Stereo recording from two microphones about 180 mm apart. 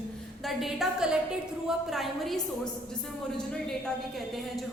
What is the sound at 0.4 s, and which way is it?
A woman's voice, centre (ahead or behind).